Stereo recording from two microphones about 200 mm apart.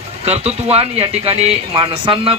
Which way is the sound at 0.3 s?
30° right (ahead or behind).